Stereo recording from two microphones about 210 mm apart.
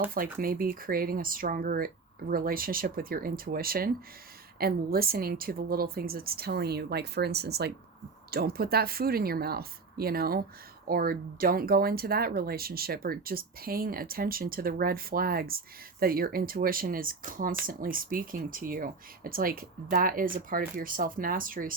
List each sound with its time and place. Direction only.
0.1 s speech: 45° right (ahead or behind)